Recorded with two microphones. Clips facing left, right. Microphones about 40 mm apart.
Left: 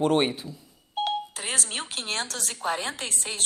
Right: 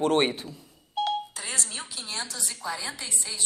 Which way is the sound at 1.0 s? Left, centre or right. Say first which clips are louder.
Even; left.